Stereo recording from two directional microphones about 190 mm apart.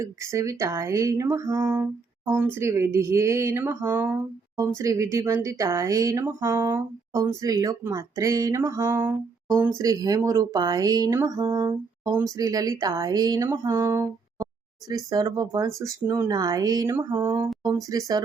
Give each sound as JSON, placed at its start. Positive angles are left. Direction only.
{"t": 0.0, "sound": "speech", "side_deg": -15}